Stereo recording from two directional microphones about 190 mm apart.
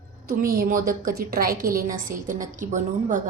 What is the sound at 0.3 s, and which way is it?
A woman's voice, 50° right (ahead or behind).